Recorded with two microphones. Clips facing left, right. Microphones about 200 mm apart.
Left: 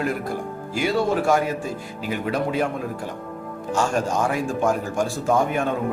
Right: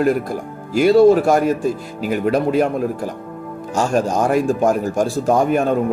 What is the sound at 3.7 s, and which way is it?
Speech, 40° right (ahead or behind).